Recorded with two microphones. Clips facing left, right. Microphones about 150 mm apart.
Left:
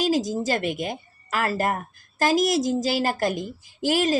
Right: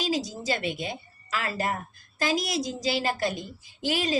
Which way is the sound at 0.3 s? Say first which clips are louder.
Left 5 dB; 45° left (ahead or behind).